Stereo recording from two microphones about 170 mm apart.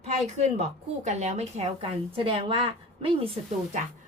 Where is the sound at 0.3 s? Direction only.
40° right (ahead or behind).